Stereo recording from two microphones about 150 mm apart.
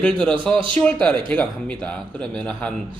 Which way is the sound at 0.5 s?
35° right (ahead or behind).